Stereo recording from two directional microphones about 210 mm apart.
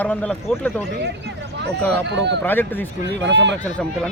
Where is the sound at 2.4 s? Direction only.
10° left (ahead or behind).